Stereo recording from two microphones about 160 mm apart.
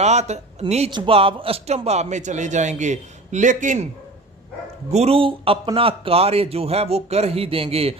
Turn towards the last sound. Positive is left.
turn(degrees=-40)  # may be behind; listen again after turning